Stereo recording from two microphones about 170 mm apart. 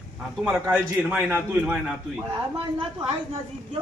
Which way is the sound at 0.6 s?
10° right (ahead or behind).